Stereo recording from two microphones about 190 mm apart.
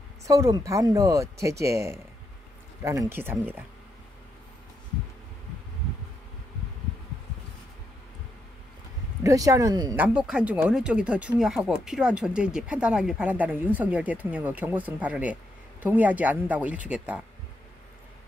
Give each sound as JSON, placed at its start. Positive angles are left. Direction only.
{"t": 0.3, "sound": "speech", "side_deg": -20}
{"t": 9.2, "sound": "speech", "side_deg": -15}
{"t": 9.9, "sound": "speech", "side_deg": -5}